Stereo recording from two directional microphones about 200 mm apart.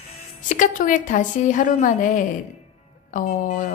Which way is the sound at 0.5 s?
40° left (ahead or behind).